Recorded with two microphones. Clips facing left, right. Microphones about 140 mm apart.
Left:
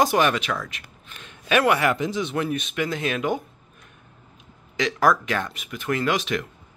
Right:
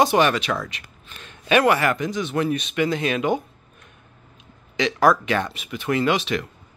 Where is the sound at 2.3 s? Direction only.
5° left (ahead or behind).